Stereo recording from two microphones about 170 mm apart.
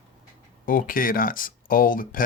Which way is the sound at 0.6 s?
55° left (ahead or behind).